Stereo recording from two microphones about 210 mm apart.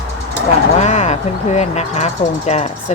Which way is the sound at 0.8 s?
30° left (ahead or behind).